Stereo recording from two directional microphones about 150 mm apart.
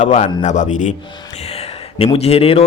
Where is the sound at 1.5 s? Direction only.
40° left (ahead or behind).